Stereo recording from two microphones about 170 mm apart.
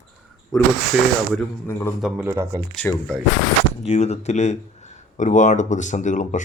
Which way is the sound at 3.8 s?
40° left (ahead or behind).